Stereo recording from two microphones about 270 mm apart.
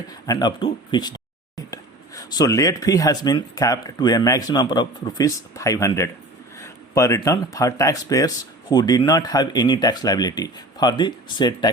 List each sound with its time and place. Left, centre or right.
0.3 s speech: centre